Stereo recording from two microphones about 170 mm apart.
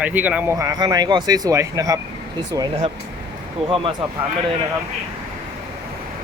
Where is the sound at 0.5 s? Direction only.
20° right (ahead or behind).